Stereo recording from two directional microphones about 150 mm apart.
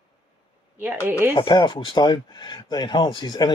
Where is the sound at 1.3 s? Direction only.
30° left (ahead or behind).